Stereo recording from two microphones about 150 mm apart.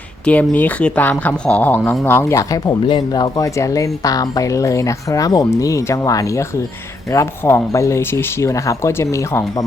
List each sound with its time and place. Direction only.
0.3 s speech: 10° left (ahead or behind)